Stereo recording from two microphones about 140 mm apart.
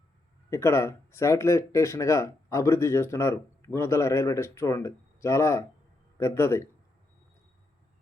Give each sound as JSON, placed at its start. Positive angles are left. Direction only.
{"t": 0.5, "sound": "speech", "side_deg": 20}